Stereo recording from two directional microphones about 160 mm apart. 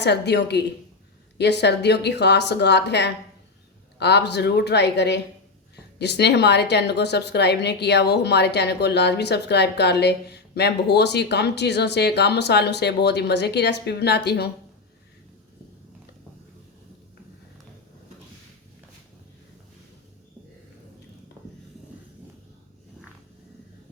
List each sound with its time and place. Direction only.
0.0 s a woman's voice: 90° left